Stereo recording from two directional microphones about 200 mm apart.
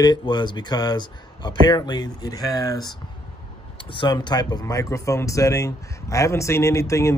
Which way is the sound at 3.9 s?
20° left (ahead or behind).